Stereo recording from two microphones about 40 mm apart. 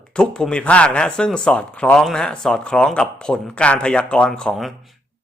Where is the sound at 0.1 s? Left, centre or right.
Left.